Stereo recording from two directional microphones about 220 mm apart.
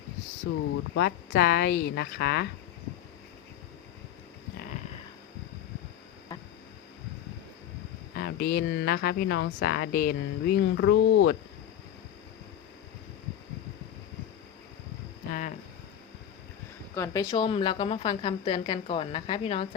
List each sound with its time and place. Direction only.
0.5 s speech: 55° left (ahead or behind)
8.2 s speech: 45° left (ahead or behind)
15.3 s hum: 35° left (ahead or behind)
16.9 s speech: 10° left (ahead or behind)
17.3 s a woman's voice: 25° left (ahead or behind)